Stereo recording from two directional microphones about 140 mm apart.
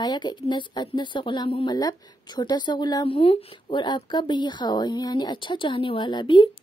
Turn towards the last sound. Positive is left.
turn(degrees=35)  # may be behind; listen again after turning